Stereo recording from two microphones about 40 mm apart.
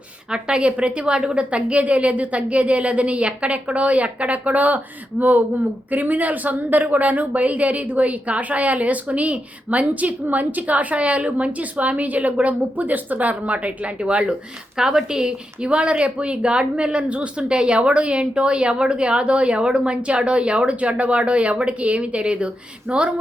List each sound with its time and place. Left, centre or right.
0.3 s a woman's voice: right
5.9 s a woman's voice: right
14.8 s a woman's voice: centre